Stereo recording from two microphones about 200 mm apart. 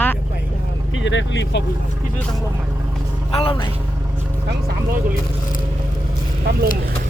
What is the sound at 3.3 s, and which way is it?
Speech, 25° left (ahead or behind).